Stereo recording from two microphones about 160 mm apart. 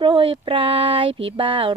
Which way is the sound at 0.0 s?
30° right (ahead or behind).